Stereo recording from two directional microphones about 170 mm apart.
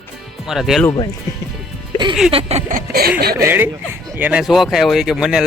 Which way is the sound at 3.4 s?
10° right (ahead or behind).